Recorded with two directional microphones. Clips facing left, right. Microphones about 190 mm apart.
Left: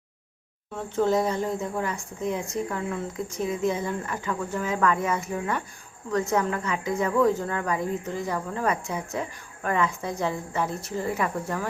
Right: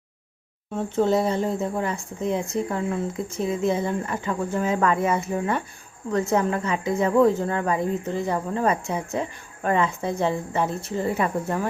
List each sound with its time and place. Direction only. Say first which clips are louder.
0.8 s speech: right 2 dB; 25° right (ahead or behind)